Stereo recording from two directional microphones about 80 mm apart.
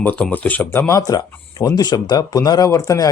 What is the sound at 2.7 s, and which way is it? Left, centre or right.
Speech, left.